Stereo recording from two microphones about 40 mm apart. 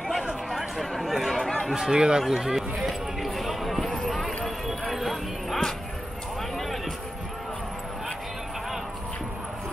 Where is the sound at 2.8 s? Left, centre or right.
Centre.